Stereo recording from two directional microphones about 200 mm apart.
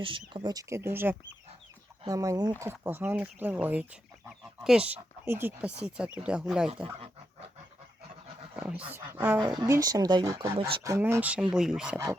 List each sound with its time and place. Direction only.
0.0 s speech: 25° right (ahead or behind); by 6.7 s 5° right (ahead or behind)
8.5 s speech: 5° right (ahead or behind)